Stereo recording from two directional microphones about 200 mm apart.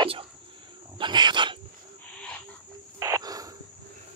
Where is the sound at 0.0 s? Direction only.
25° right (ahead or behind).